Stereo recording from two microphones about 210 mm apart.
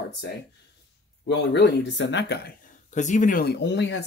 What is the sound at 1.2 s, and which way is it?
Speech, 55° left (ahead or behind).